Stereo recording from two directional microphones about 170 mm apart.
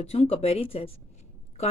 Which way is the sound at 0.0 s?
35° left (ahead or behind).